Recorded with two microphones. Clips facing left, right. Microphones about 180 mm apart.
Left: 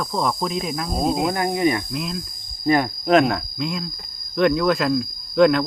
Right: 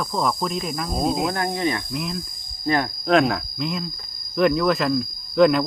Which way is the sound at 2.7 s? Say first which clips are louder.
Left 3 dB; 15° left (ahead or behind).